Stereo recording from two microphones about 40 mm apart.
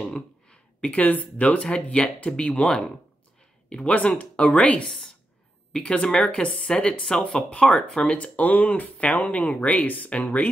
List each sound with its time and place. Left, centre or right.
0.5 s a sound: left
1.0 s speech: left
3.7 s speech: left
4.8 s speech: centre
5.7 s speech: left
8.2 s speech: left